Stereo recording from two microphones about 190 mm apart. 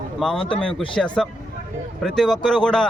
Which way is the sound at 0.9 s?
5° left (ahead or behind).